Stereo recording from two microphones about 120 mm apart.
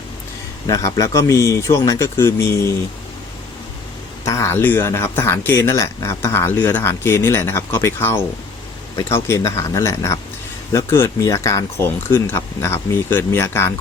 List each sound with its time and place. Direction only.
0.7 s speech: 30° left (ahead or behind)
4.3 s speech: 25° left (ahead or behind)